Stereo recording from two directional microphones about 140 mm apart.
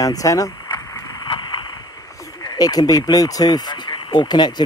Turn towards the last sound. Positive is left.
turn(degrees=30)  # may be behind; listen again after turning